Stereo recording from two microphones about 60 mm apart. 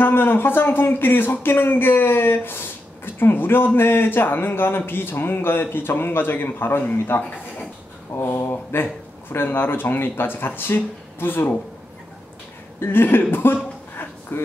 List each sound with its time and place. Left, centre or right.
0.0 s speech: left
12.8 s speech: left